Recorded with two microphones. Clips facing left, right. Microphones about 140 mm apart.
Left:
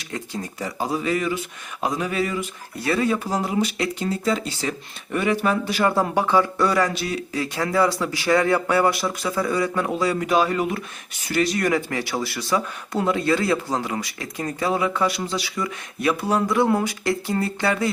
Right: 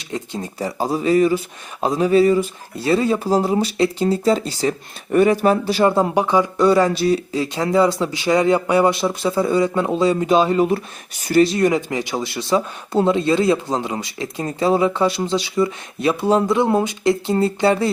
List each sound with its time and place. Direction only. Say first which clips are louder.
0.1 s speech: right 4 dB; 30° right (ahead or behind)